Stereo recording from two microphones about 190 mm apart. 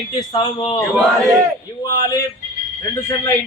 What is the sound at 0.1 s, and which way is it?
Speech, 25° left (ahead or behind).